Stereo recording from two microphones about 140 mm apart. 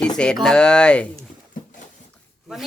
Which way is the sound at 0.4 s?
5° left (ahead or behind).